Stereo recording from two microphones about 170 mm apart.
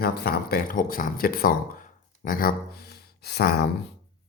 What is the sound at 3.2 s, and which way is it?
Speech, 70° left (ahead or behind).